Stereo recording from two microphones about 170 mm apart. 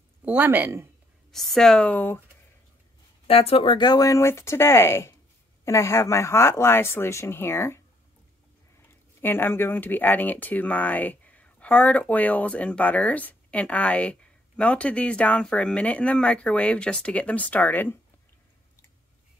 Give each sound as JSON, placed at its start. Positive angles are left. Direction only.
{"t": 0.2, "sound": "speech", "side_deg": -10}
{"t": 1.3, "sound": "speech", "side_deg": 0}
{"t": 3.3, "sound": "speech", "side_deg": 35}
{"t": 9.2, "sound": "speech", "side_deg": 10}